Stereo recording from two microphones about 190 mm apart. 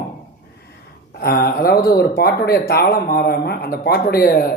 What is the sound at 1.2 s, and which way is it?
Speech, 55° left (ahead or behind).